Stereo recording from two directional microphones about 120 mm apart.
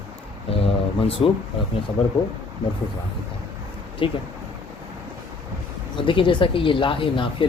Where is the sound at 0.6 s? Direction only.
55° left (ahead or behind).